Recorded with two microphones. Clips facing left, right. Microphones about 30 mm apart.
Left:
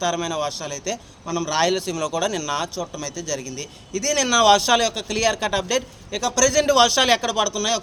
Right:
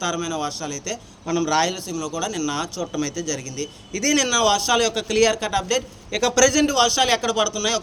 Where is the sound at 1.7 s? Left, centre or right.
Left.